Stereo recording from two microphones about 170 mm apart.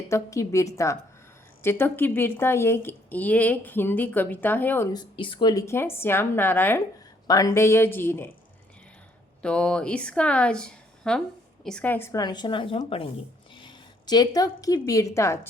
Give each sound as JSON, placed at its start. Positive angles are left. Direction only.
{"t": 0.1, "sound": "speech", "side_deg": 20}
{"t": 4.9, "sound": "speech", "side_deg": 25}
{"t": 9.4, "sound": "a woman's voice", "side_deg": 5}